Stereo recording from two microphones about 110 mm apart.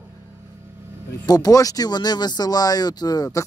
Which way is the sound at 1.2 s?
35° left (ahead or behind).